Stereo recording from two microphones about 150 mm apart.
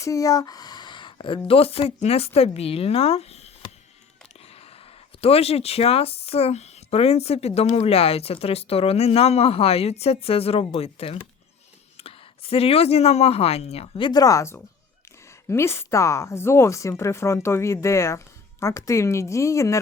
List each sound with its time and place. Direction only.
0.0 s a woman's voice: 20° left (ahead or behind)